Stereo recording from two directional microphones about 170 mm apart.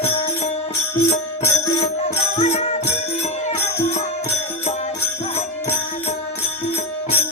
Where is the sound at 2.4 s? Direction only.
40° left (ahead or behind).